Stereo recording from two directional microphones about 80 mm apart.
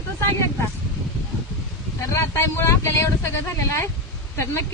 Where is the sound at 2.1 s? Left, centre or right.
Left.